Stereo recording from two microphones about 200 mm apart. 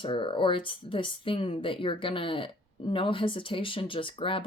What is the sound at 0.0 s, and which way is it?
Speech, 25° left (ahead or behind).